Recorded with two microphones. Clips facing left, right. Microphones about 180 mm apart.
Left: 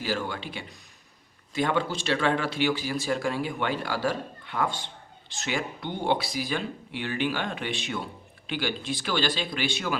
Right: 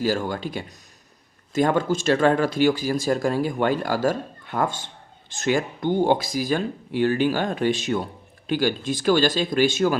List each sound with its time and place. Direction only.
0.0 s a man's voice: 40° right (ahead or behind)